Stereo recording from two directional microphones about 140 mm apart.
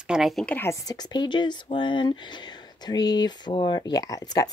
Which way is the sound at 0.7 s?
25° left (ahead or behind).